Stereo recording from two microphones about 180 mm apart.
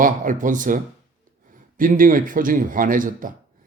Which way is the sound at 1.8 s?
50° right (ahead or behind).